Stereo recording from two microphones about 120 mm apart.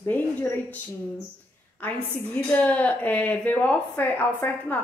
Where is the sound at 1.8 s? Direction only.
10° left (ahead or behind).